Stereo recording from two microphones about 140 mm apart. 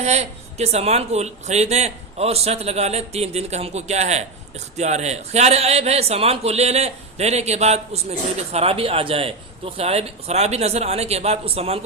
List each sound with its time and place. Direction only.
0.0 s speech: 50° right (ahead or behind)